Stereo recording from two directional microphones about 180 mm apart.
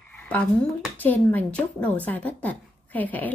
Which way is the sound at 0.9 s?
10° left (ahead or behind).